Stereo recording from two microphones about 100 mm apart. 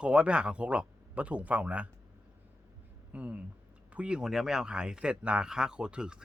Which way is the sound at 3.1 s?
15° right (ahead or behind).